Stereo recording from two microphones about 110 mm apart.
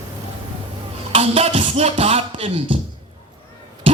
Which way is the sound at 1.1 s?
70° right (ahead or behind).